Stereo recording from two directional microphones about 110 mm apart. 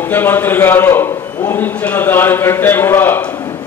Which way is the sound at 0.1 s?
20° left (ahead or behind).